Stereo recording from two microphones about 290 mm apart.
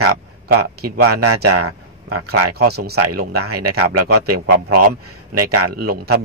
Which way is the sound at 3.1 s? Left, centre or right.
Right.